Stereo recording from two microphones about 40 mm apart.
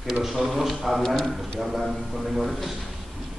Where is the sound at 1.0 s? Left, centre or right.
Centre.